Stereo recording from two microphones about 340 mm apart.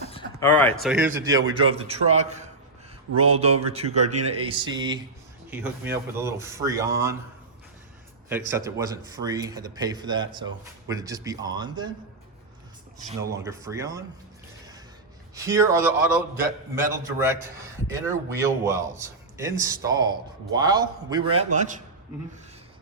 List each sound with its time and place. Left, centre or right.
0.1 s a man's voice: centre
8.3 s a man's voice: centre
13.3 s a man's voice: centre
15.4 s a man's voice: centre